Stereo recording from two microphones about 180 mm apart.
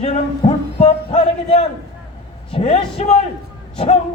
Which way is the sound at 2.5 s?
35° left (ahead or behind).